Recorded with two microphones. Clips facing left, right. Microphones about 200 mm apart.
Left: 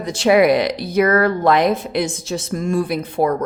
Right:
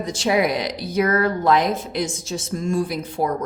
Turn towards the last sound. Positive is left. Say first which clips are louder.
# left 5 dB
turn(degrees=60)  # may be behind; listen again after turning